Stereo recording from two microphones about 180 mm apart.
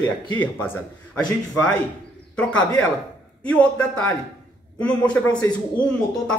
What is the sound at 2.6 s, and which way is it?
Speech, 20° left (ahead or behind).